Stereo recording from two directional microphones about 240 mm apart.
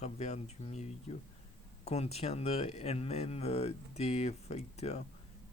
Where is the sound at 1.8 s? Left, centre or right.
Left.